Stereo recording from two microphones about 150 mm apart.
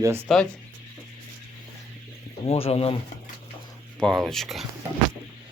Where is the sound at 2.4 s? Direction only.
40° left (ahead or behind).